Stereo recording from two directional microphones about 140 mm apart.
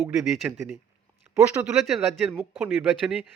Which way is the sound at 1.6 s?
Centre (ahead or behind).